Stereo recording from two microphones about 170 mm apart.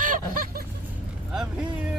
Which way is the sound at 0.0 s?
55° right (ahead or behind).